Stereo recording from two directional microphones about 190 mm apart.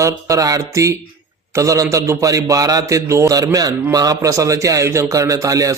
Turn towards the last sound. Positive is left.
turn(degrees=-20)  # may be behind; listen again after turning